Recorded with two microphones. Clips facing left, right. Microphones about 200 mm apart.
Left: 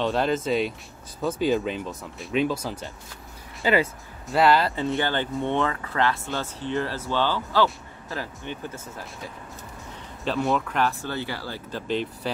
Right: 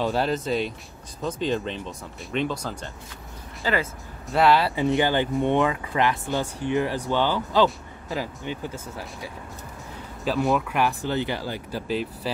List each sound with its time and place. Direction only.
0.0 s speech: centre (ahead or behind); by 3.9 s 15° left (ahead or behind)
4.3 s speech: centre (ahead or behind)
4.8 s speech: 15° right (ahead or behind)
10.2 s speech: centre (ahead or behind)
11.9 s speech: 5° right (ahead or behind)